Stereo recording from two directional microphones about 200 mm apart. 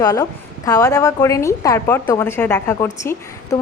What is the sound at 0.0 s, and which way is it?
A woman's voice, 20° left (ahead or behind).